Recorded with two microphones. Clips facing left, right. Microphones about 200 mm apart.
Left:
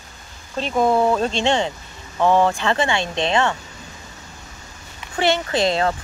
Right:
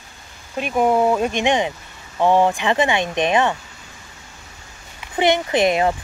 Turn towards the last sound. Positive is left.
turn(degrees=-15)  # may be behind; listen again after turning